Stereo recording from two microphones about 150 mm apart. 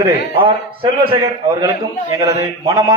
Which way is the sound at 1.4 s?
20° right (ahead or behind).